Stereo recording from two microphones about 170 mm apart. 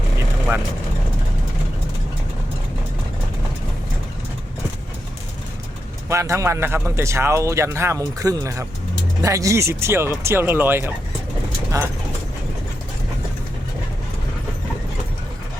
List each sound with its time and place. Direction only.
6.1 s speech: 15° right (ahead or behind)